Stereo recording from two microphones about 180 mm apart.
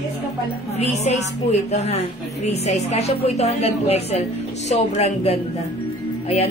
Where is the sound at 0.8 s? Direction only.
35° left (ahead or behind).